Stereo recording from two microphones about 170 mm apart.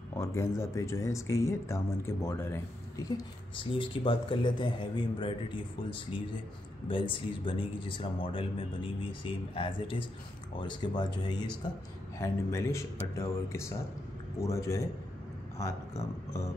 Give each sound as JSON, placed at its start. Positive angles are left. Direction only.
{"t": 0.2, "sound": "speech", "side_deg": 15}